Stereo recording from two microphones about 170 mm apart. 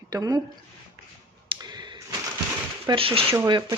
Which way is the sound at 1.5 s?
25° right (ahead or behind).